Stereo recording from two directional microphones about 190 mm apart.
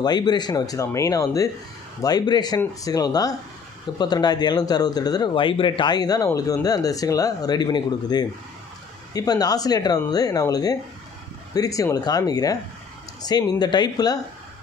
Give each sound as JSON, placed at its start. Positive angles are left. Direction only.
{"t": 0.0, "sound": "speech", "side_deg": 20}